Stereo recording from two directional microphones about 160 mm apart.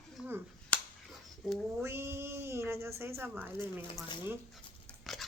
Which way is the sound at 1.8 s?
15° right (ahead or behind).